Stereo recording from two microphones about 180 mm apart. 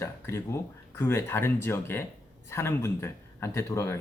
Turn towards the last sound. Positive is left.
turn(degrees=15)  # may be behind; listen again after turning